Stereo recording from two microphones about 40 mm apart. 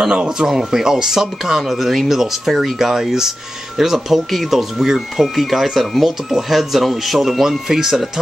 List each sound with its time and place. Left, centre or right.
0.0 s speech: centre